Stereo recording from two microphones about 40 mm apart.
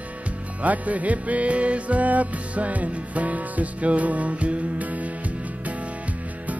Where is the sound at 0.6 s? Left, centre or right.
Right.